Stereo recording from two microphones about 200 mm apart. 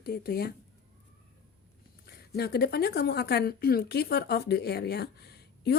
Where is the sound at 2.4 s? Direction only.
55° left (ahead or behind).